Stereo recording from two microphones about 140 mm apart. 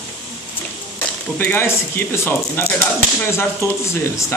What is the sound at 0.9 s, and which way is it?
Speech, 15° left (ahead or behind).